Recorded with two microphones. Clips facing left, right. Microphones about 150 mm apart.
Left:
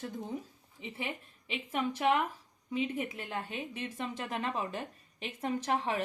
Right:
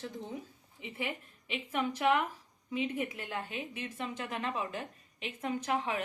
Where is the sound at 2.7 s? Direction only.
35° left (ahead or behind).